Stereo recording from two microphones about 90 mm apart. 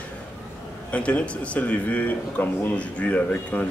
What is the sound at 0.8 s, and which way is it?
A man's voice, 15° left (ahead or behind).